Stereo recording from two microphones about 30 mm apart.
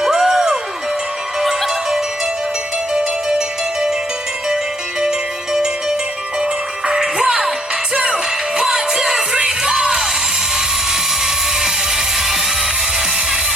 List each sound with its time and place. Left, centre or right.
0.2 s music: centre
3.3 s music: right
13.0 s music: right